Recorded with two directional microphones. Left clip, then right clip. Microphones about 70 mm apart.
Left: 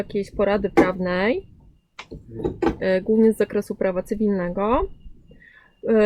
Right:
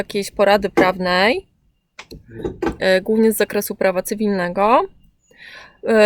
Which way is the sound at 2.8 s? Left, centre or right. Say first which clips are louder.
Right 4 dB; right.